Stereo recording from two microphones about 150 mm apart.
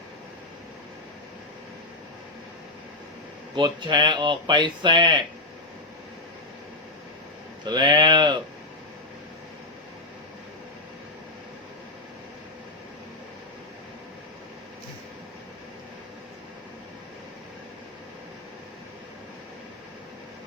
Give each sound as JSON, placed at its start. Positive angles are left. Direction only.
{"t": 3.5, "sound": "speech", "side_deg": -30}
{"t": 7.6, "sound": "speech", "side_deg": -30}